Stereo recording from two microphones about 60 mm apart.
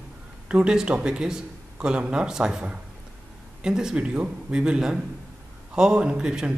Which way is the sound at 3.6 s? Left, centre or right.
Centre.